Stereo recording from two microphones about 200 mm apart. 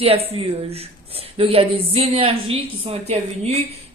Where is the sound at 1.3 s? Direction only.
30° right (ahead or behind).